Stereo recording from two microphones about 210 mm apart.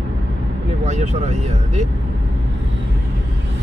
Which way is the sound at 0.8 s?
35° right (ahead or behind).